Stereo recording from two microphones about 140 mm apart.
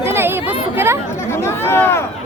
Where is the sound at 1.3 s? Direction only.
15° left (ahead or behind).